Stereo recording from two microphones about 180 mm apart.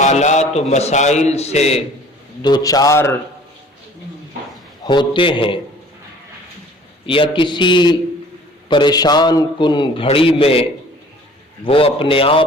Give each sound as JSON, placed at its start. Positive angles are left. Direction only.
{"t": 0.0, "sound": "a man's voice", "side_deg": 40}
{"t": 2.4, "sound": "a man's voice", "side_deg": 20}
{"t": 4.8, "sound": "a man's voice", "side_deg": 25}
{"t": 7.1, "sound": "a man's voice", "side_deg": 30}